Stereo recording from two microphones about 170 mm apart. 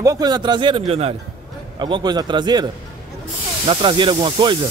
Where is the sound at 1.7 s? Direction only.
25° right (ahead or behind).